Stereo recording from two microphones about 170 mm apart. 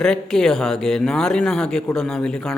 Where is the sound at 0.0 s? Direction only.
5° left (ahead or behind).